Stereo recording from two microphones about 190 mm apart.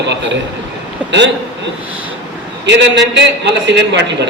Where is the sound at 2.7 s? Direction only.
65° right (ahead or behind).